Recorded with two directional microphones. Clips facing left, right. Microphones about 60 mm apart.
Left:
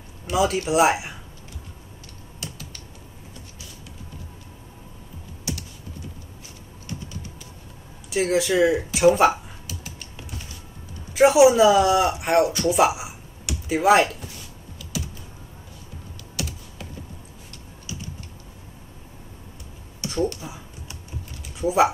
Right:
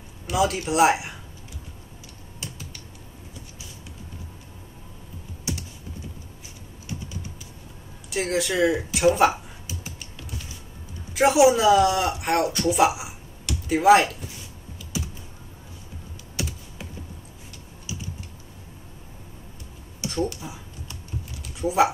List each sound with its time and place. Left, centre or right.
0.3 s speech: centre
8.1 s speech: centre
11.1 s speech: centre
16.4 s computer keyboard: right
20.1 s a sound: centre
21.5 s speech: centre